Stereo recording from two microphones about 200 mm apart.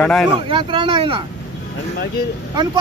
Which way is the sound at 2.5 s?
20° right (ahead or behind).